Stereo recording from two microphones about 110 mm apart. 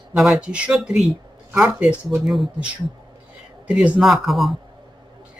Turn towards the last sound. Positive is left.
turn(degrees=0)  # may be behind; listen again after turning